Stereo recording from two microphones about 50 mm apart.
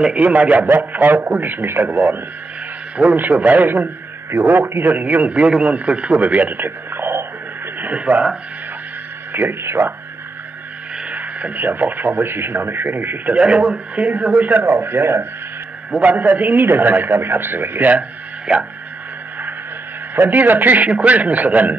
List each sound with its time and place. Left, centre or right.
0.1 s a man's voice: right
3.2 s a man's voice: right
7.8 s speech: right
9.3 s speech: right
11.1 s speech: right
13.3 s speech: right
15.9 s speech: right
18.5 s a man's voice: centre
20.2 s speech: right